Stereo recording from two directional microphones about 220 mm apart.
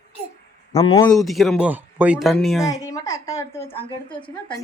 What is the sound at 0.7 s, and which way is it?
Speech, 15° left (ahead or behind).